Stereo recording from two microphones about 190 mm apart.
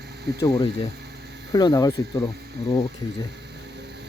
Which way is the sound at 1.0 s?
60° right (ahead or behind).